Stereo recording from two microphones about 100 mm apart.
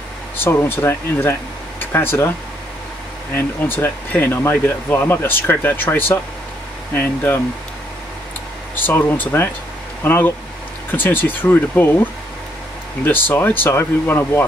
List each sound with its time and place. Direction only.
0.4 s speech: 25° left (ahead or behind)
3.3 s speech: 20° left (ahead or behind)
8.7 s speech: 20° left (ahead or behind)